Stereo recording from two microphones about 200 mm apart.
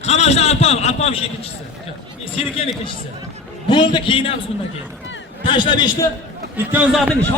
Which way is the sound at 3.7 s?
25° left (ahead or behind).